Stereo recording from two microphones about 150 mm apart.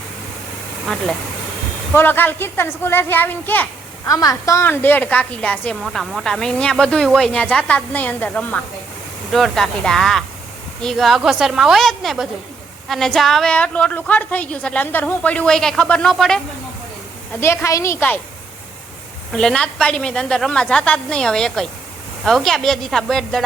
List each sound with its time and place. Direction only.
1.9 s a woman's voice: 15° left (ahead or behind)
4.1 s a woman's voice: 25° left (ahead or behind); by 16.4 s centre (ahead or behind)
17.4 s a woman's voice: 20° left (ahead or behind)
19.3 s speech: 5° left (ahead or behind)